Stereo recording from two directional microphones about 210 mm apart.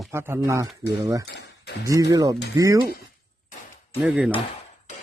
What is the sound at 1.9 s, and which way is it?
Speech, 15° right (ahead or behind).